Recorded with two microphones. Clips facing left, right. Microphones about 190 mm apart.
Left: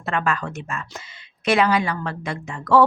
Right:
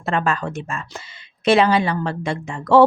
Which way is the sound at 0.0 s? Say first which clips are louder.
Right 3 dB; 30° right (ahead or behind).